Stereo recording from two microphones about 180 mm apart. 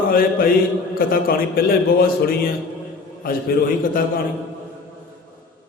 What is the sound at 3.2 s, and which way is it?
Mantra, 50° left (ahead or behind).